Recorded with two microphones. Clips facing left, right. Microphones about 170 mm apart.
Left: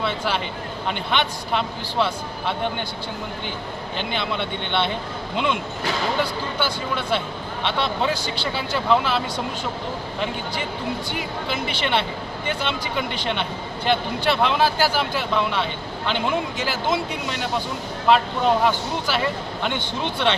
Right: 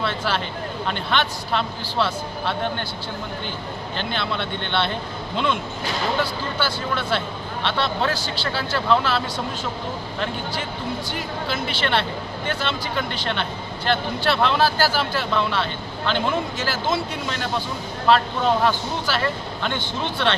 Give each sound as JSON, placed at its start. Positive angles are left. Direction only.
{"t": 0.0, "sound": "speech", "side_deg": 10}
{"t": 3.9, "sound": "speech", "side_deg": 15}
{"t": 6.6, "sound": "speech", "side_deg": 15}
{"t": 11.8, "sound": "speech", "side_deg": 15}